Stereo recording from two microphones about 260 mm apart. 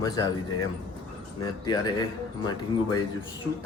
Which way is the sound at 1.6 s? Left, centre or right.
Centre.